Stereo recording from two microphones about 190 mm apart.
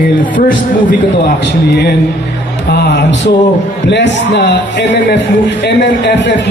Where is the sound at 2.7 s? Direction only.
60° left (ahead or behind).